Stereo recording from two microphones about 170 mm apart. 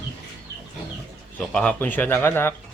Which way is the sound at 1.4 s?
10° left (ahead or behind).